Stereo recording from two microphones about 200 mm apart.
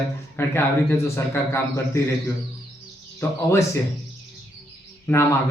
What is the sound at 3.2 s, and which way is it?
Speech, 10° left (ahead or behind).